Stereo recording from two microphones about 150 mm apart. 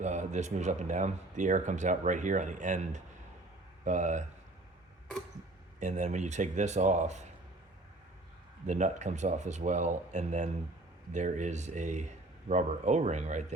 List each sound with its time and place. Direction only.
0.0 s speech: 50° right (ahead or behind)
5.8 s speech: 50° right (ahead or behind)
8.6 s speech: 55° right (ahead or behind)